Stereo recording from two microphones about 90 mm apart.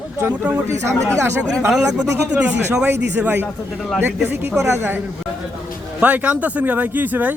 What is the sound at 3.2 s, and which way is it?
A man's voice, 20° right (ahead or behind).